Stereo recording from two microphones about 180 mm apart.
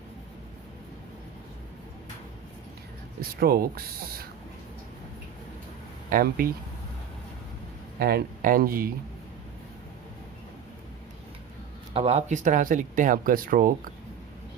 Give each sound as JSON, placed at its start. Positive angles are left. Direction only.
{"t": 3.2, "sound": "speech", "side_deg": -55}
{"t": 6.1, "sound": "speech", "side_deg": -55}
{"t": 7.9, "sound": "speech", "side_deg": -55}
{"t": 11.9, "sound": "speech", "side_deg": -35}